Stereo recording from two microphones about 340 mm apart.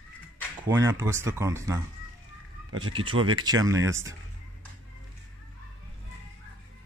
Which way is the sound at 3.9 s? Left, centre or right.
Centre.